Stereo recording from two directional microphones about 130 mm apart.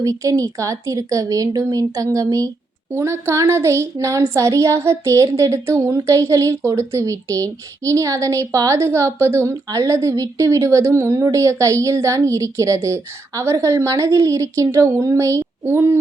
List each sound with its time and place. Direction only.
0.0 s a woman's voice: 25° right (ahead or behind)